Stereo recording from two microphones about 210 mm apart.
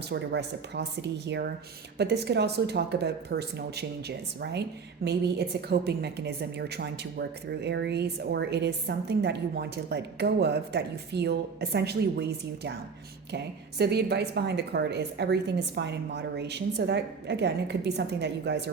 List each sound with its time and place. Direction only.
0.1 s a woman's voice: 55° right (ahead or behind)